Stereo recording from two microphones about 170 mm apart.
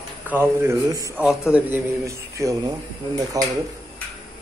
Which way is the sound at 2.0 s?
20° right (ahead or behind).